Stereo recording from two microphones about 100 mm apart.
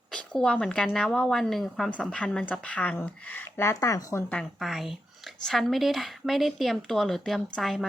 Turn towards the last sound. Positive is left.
turn(degrees=5)  # may be behind; listen again after turning